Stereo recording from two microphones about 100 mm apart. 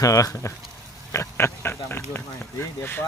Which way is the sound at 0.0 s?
35° left (ahead or behind).